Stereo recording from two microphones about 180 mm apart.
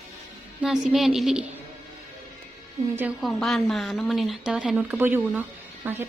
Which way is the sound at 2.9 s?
10° right (ahead or behind).